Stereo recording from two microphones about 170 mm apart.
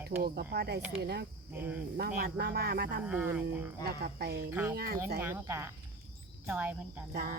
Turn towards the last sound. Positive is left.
turn(degrees=-60)  # may be behind; listen again after turning